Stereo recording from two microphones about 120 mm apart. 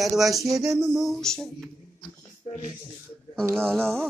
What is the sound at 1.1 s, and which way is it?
Music, 5° left (ahead or behind).